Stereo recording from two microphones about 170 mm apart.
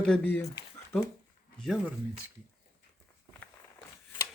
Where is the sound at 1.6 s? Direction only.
Centre (ahead or behind).